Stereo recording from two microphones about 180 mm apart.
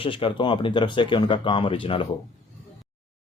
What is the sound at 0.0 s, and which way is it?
Speech, 30° left (ahead or behind).